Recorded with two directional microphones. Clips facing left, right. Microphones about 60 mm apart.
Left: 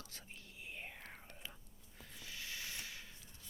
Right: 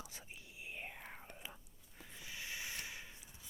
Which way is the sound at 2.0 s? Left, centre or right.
Centre.